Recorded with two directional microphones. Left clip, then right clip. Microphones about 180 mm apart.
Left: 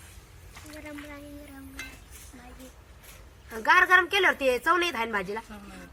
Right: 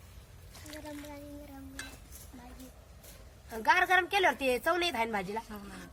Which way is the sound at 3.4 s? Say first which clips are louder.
Left 6 dB; 45° right (ahead or behind).